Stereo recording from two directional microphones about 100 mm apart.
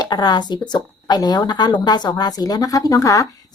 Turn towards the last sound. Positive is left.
turn(degrees=35)  # may be behind; listen again after turning